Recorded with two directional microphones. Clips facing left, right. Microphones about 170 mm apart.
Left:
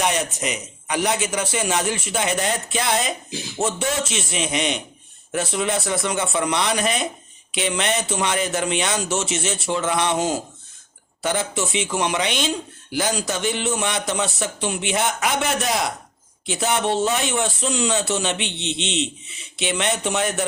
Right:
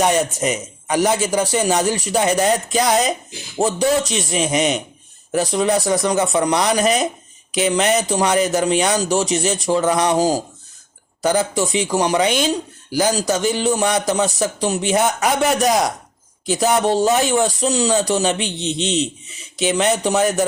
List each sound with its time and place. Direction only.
0.0 s speech: 40° right (ahead or behind)